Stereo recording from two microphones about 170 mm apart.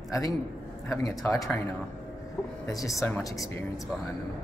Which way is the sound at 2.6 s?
20° left (ahead or behind).